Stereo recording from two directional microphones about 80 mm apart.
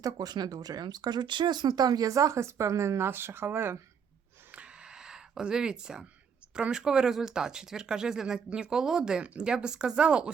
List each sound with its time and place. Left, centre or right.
0.0 s speech: right
4.5 s a sound: centre
6.6 s speech: centre